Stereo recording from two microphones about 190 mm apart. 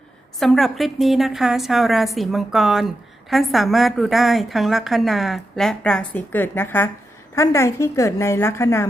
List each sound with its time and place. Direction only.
0.3 s a woman's voice: centre (ahead or behind)